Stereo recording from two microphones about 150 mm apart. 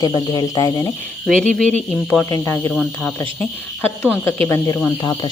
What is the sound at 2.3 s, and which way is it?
Speech, 20° left (ahead or behind).